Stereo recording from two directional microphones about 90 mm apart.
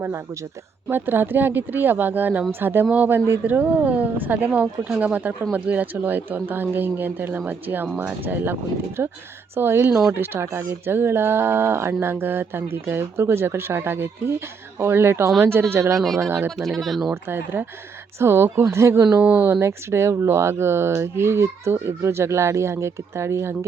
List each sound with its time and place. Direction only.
0.9 s speech: 25° right (ahead or behind)
16.6 s speech: centre (ahead or behind)
17.2 s speech: 25° right (ahead or behind)
19.2 s speech: 15° right (ahead or behind)
19.5 s speech: 30° right (ahead or behind)